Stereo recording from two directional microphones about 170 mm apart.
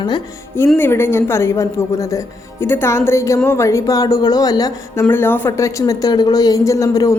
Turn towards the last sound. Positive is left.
turn(degrees=20)  # may be behind; listen again after turning